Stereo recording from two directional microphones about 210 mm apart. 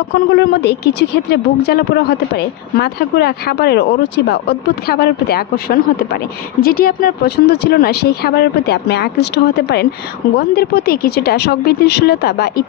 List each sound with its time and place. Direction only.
0.1 s speech: 55° left (ahead or behind)